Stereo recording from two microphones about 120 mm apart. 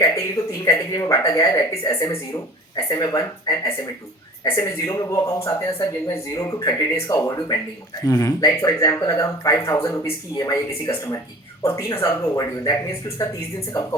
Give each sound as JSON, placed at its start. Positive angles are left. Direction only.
{"t": 0.6, "sound": "a woman's voice", "side_deg": 30}